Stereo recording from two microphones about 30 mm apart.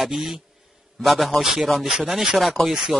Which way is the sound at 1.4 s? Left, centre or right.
Centre.